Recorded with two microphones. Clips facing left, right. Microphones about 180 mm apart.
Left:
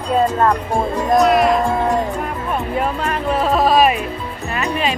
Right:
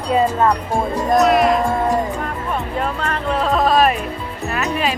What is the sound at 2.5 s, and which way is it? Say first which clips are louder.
Music: left 3 dB; 10° left (ahead or behind).